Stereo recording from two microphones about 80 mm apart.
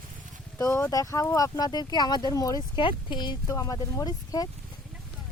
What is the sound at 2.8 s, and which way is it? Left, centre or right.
Speech, left.